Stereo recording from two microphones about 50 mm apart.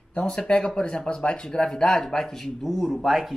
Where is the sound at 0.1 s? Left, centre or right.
Centre.